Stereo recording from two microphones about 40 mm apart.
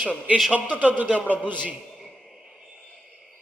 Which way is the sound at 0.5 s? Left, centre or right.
Right.